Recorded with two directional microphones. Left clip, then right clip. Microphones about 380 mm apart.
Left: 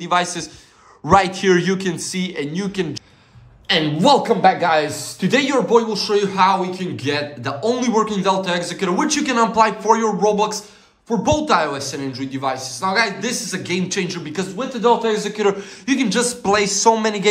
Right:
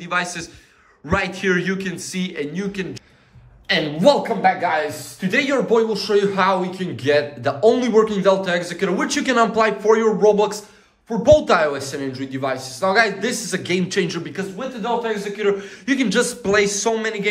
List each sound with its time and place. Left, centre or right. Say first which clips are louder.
0.0 s a man's voice: left 4 dB; centre
15.0 s a man's voice: left 2 dB; centre